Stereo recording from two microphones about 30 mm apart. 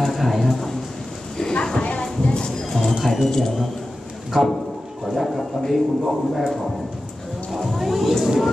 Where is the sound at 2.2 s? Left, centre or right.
Left.